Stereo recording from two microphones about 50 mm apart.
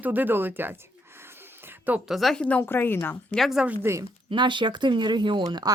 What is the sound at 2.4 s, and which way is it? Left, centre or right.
Speech, left.